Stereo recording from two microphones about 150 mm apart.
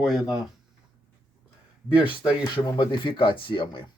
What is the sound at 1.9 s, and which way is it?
Speech, 35° left (ahead or behind).